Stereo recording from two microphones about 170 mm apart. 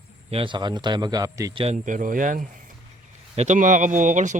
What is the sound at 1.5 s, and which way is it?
Speech, 40° right (ahead or behind).